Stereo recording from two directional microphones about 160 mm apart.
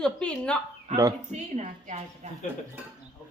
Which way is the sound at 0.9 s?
45° right (ahead or behind).